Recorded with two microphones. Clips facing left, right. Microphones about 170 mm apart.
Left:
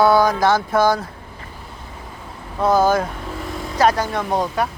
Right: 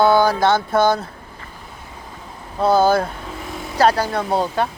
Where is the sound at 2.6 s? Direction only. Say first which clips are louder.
Right 1 dB; 30° right (ahead or behind).